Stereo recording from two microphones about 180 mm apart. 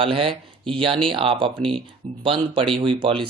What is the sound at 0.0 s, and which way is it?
Speech, 30° right (ahead or behind).